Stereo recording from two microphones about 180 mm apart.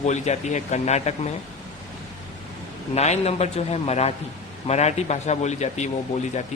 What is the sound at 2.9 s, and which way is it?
A man's voice, 35° left (ahead or behind).